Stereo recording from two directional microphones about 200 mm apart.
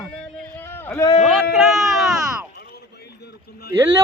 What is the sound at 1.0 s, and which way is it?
Speech, 30° left (ahead or behind).